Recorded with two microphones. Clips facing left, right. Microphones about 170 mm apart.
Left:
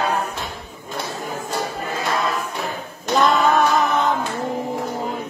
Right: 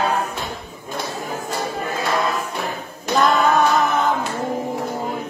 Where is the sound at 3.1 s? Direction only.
Centre (ahead or behind).